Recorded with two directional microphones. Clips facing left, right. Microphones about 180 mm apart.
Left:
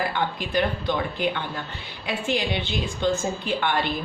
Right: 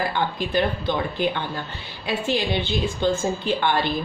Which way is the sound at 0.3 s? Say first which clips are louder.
Right 2 dB; 30° right (ahead or behind).